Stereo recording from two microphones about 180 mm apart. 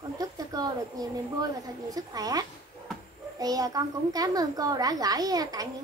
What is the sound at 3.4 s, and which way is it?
A child's voice, 20° right (ahead or behind).